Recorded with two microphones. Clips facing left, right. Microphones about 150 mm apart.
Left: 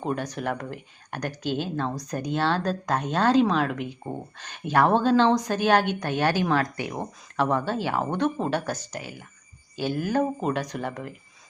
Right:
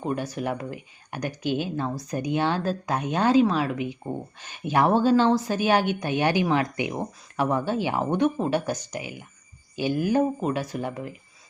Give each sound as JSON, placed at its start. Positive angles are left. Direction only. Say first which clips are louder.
{"t": 0.0, "sound": "speech", "louder": "right 1 dB", "side_deg": -5}